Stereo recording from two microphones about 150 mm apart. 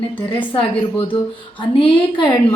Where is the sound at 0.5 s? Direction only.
35° left (ahead or behind).